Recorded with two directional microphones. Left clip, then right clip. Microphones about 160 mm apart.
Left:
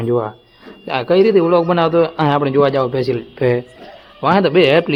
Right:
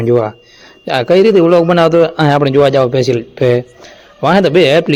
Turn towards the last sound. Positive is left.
turn(degrees=-30)  # may be behind; listen again after turning